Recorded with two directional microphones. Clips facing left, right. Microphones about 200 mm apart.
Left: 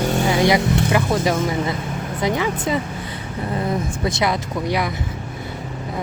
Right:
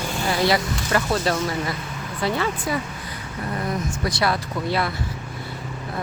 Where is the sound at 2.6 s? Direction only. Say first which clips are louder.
Left 4 dB; 25° left (ahead or behind).